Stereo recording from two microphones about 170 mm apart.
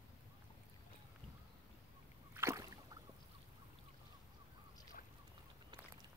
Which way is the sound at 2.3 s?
15° right (ahead or behind).